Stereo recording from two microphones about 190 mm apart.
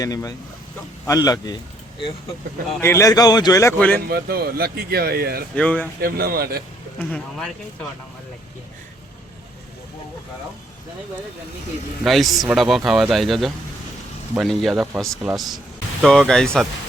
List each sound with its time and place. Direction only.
0.0 s speech: 20° left (ahead or behind)
2.8 s speech: 15° left (ahead or behind)
3.9 s speech: 55° right (ahead or behind)
5.5 s speech: 10° left (ahead or behind)
6.0 s speech: 55° right (ahead or behind)
7.1 s a man's voice: 5° left (ahead or behind)
12.0 s a man's voice: centre (ahead or behind)